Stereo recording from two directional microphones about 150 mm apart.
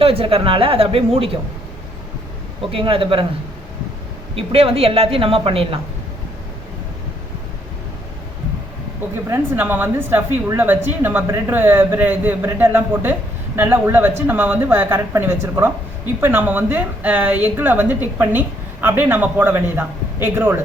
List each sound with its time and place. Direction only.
0.0 s a woman's voice: 40° right (ahead or behind)
2.6 s a woman's voice: 35° right (ahead or behind)
4.4 s a woman's voice: 40° right (ahead or behind)
9.2 s a woman's voice: 15° right (ahead or behind)